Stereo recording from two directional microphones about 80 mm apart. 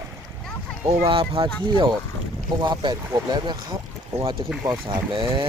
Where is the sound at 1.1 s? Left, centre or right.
Right.